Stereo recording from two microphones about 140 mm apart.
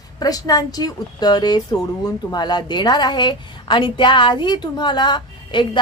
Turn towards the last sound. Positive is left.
turn(degrees=35)  # may be behind; listen again after turning